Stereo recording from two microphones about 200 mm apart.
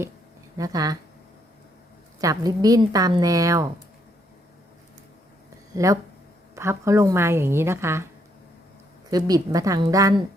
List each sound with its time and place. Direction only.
0.5 s a woman's voice: 20° right (ahead or behind)
2.2 s a woman's voice: 20° right (ahead or behind)
5.7 s a woman's voice: 15° right (ahead or behind)
9.0 s a woman's voice: 20° right (ahead or behind)